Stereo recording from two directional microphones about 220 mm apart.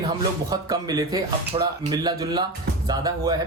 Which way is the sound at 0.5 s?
15° right (ahead or behind).